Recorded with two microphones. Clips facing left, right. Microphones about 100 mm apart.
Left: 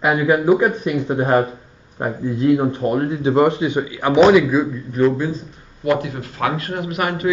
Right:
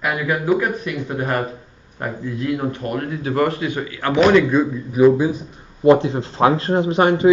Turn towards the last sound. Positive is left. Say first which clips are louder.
# right 7 dB
turn(degrees=-25)  # may be behind; listen again after turning